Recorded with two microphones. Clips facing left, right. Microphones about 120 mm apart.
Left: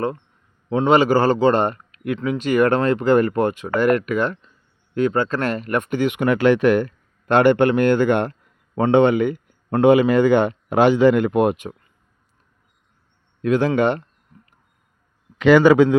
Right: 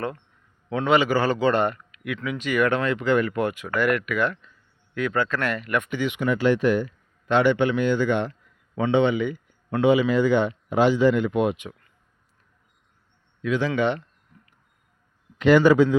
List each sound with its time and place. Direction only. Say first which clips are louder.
0.7 s speech: left 5 dB; 30° left (ahead or behind); by 6.2 s 50° left (ahead or behind)
6.2 s speech: left 5 dB; 70° left (ahead or behind); by 11.5 s 55° left (ahead or behind)
13.4 s a man's voice: left 5 dB; 50° left (ahead or behind)
15.4 s a man's voice: left 4 dB; 90° left; by 16.0 s 75° left (ahead or behind)